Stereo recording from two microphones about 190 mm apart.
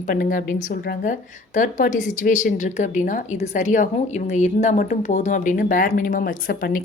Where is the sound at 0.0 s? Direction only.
45° left (ahead or behind).